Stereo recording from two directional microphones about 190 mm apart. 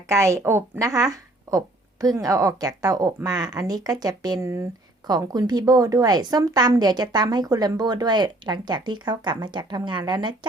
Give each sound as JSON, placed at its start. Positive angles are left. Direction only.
{"t": 0.1, "sound": "speech", "side_deg": -15}